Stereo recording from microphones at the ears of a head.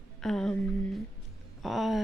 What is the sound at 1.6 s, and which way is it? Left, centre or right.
Music, centre.